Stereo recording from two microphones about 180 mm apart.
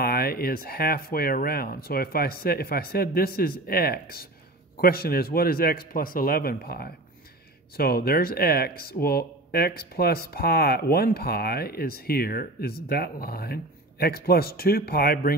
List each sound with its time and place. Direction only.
0.0 s speech: 55° left (ahead or behind)